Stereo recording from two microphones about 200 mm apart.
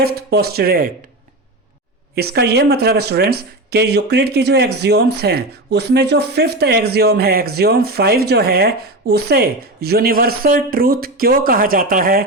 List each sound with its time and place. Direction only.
0.0 s speech: 50° right (ahead or behind)
2.1 s speech: 55° right (ahead or behind)